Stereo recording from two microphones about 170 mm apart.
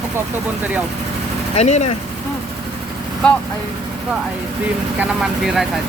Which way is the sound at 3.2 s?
5° left (ahead or behind).